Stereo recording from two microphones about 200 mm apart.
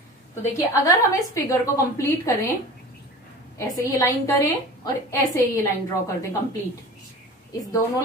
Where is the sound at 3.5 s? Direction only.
15° left (ahead or behind).